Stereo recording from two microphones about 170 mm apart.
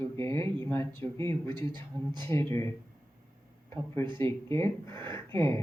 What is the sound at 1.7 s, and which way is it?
Speech, 25° right (ahead or behind).